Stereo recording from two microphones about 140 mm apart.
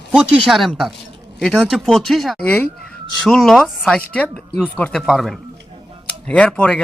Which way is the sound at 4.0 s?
10° left (ahead or behind).